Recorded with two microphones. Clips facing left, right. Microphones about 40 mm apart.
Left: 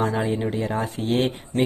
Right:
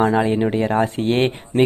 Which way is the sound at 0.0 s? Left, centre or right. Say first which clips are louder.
Right 7 dB; right.